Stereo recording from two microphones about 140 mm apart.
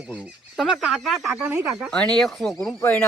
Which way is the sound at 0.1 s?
Centre (ahead or behind).